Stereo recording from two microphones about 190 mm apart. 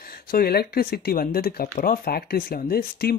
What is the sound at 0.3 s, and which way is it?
Speech, 55° left (ahead or behind).